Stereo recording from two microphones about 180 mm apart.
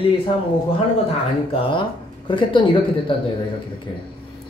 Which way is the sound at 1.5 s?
30° left (ahead or behind).